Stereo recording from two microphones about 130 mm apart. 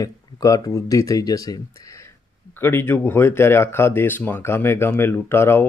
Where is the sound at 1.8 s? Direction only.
20° left (ahead or behind).